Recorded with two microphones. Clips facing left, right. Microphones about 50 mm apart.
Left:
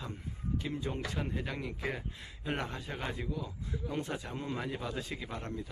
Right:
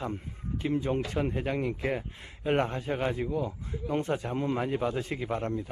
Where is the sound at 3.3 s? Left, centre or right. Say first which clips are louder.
Right 7 dB; right.